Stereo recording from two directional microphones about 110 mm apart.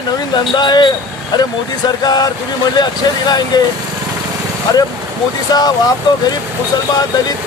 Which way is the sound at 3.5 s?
40° left (ahead or behind).